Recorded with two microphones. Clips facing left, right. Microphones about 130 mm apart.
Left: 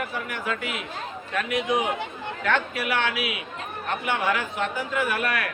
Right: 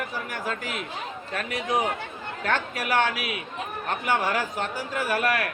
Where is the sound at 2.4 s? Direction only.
40° right (ahead or behind).